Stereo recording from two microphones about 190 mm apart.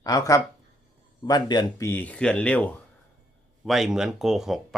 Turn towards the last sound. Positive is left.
turn(degrees=0)  # may be behind; listen again after turning